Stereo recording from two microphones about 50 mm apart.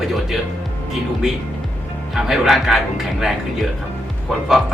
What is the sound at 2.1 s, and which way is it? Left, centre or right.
Speech, centre.